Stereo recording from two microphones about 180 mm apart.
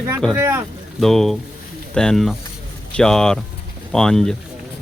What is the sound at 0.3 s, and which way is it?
Speech, 15° right (ahead or behind).